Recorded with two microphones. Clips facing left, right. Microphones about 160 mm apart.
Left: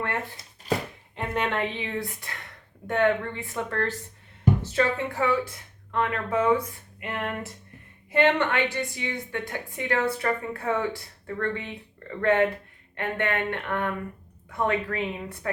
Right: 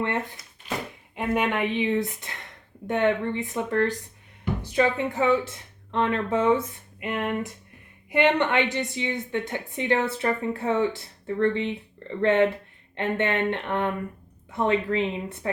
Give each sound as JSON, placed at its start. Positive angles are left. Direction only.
{"t": 1.1, "sound": "a woman's voice", "side_deg": -10}